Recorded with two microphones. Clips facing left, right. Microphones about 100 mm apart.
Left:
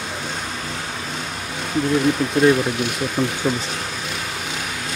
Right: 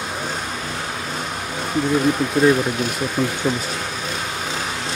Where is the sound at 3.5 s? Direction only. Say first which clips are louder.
Even; 35° right (ahead or behind).